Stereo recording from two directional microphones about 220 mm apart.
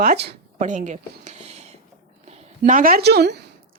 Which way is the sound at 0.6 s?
35° right (ahead or behind).